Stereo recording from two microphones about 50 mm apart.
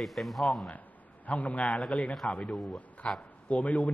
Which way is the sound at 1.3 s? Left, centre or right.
Left.